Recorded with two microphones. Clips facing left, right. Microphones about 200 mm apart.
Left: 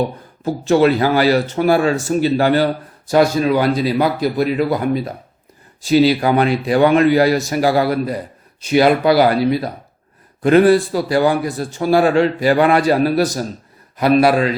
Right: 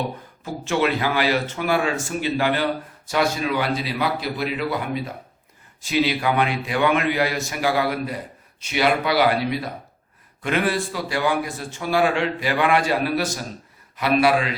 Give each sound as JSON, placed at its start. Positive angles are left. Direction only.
{"t": 0.4, "sound": "a man's voice", "side_deg": 35}